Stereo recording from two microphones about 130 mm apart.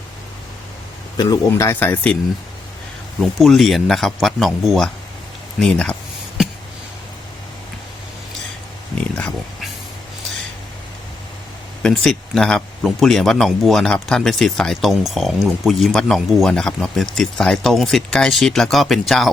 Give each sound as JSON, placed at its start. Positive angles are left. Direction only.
{"t": 1.1, "sound": "speech", "side_deg": 30}
{"t": 1.5, "sound": "speech", "side_deg": 20}
{"t": 3.2, "sound": "speech", "side_deg": 0}
{"t": 11.8, "sound": "speech", "side_deg": 5}